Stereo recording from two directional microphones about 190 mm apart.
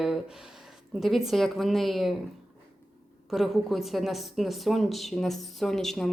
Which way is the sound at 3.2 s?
Centre (ahead or behind).